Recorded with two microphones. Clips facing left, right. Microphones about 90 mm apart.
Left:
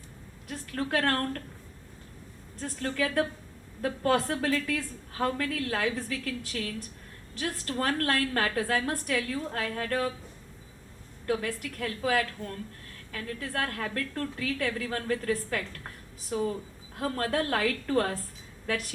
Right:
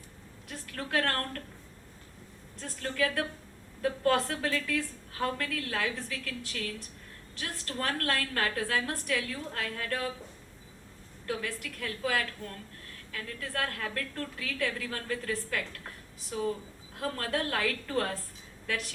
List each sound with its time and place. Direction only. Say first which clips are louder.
0.4 s a woman's voice: left 6 dB; 45° left (ahead or behind)
2.6 s a woman's voice: left 1 dB; 40° left (ahead or behind)
11.3 s a woman's voice: left 5 dB; 40° left (ahead or behind)
17.0 s a woman's voice: left 3 dB; 40° left (ahead or behind)